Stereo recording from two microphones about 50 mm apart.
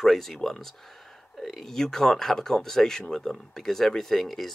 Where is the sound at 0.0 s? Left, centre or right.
Centre.